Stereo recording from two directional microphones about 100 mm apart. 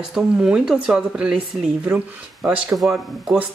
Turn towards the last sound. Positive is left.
turn(degrees=-5)  # may be behind; listen again after turning